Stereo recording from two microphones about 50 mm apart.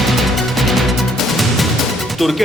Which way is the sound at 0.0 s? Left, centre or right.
Centre.